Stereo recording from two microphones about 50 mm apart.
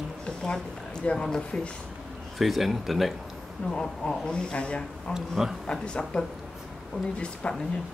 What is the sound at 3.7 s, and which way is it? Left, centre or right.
Speech, centre.